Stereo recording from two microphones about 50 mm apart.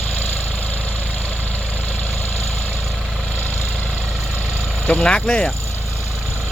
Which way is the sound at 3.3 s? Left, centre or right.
Left.